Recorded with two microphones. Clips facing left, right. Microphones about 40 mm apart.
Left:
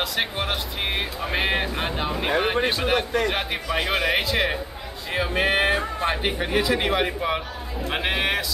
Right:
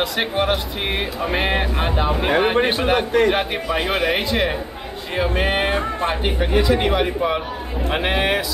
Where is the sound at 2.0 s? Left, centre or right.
Centre.